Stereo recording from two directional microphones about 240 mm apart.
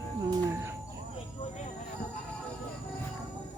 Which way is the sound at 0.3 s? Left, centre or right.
Centre.